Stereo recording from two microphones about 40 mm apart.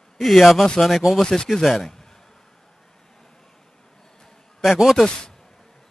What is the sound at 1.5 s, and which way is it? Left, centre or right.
Speech, centre.